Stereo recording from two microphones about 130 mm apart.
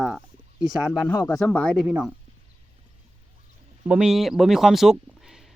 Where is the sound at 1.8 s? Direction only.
10° right (ahead or behind).